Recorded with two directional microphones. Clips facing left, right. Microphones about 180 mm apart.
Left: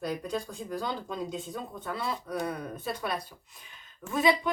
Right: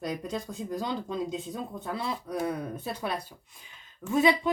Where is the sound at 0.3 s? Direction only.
20° right (ahead or behind).